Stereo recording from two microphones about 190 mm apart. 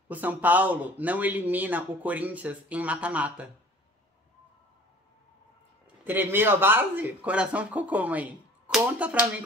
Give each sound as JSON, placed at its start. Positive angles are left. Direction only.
{"t": 0.1, "sound": "speech", "side_deg": -10}
{"t": 6.0, "sound": "speech", "side_deg": -10}